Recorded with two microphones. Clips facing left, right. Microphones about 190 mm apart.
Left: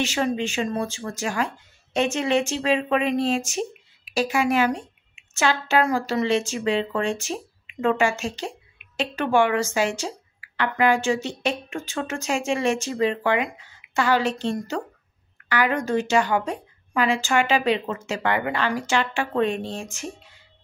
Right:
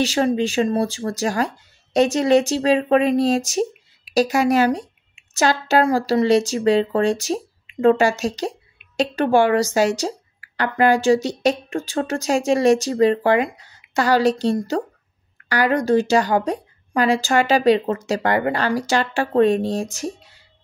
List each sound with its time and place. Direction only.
0.0 s speech: 35° right (ahead or behind)